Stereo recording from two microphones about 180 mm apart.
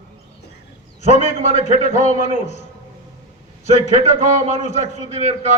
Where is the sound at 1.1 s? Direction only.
40° left (ahead or behind).